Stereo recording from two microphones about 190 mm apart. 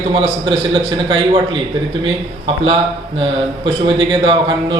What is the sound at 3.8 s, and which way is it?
Speech, 25° right (ahead or behind).